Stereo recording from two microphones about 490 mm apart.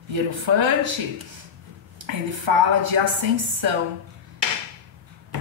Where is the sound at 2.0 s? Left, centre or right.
Right.